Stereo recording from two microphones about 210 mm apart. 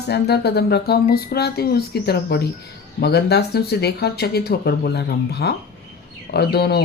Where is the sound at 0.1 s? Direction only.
50° left (ahead or behind).